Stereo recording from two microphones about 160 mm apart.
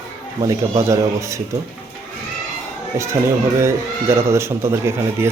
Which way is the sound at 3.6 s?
15° right (ahead or behind).